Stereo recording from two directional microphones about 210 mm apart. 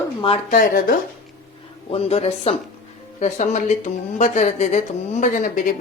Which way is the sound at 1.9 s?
30° left (ahead or behind).